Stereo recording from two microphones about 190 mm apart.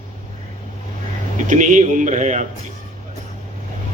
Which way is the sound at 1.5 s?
40° right (ahead or behind).